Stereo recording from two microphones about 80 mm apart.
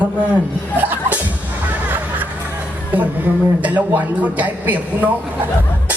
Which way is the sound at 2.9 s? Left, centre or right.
Right.